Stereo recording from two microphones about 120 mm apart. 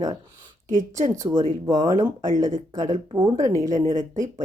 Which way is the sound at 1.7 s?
30° right (ahead or behind).